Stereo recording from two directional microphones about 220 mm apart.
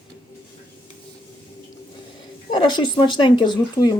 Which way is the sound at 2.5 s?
20° left (ahead or behind).